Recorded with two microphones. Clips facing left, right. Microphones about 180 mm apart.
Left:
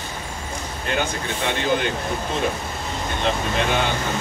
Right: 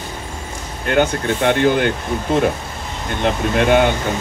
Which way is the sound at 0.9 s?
60° right (ahead or behind).